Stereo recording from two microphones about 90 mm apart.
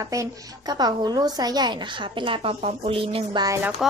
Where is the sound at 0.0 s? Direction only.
35° right (ahead or behind); by 3.3 s 90° right.